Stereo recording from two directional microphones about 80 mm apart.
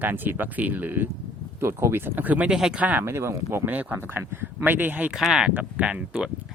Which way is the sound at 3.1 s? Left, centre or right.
Right.